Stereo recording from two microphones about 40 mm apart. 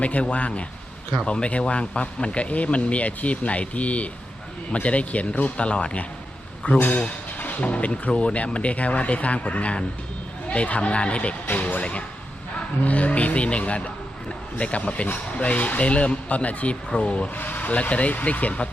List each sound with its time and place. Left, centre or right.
0.0 s speech: left
6.7 s speech: left
17.3 s speech: left